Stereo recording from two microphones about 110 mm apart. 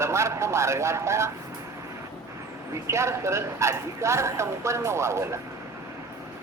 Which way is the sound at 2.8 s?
25° right (ahead or behind).